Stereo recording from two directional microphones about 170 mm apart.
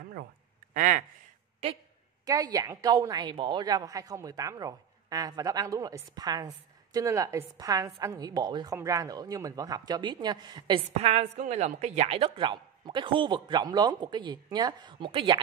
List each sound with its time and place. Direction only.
0.7 s speech: 50° right (ahead or behind)
2.2 s a woman's voice: 20° right (ahead or behind)
11.0 s a woman's voice: 40° right (ahead or behind)